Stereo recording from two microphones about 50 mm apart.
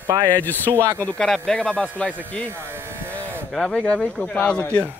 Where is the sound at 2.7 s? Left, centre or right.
Right.